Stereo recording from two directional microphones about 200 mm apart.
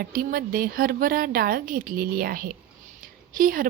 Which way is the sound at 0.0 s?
45° right (ahead or behind).